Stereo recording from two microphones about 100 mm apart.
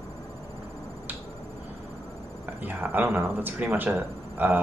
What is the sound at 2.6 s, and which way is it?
Speech, 20° right (ahead or behind).